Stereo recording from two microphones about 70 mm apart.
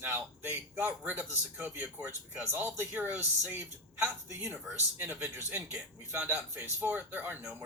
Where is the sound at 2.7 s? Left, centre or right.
Right.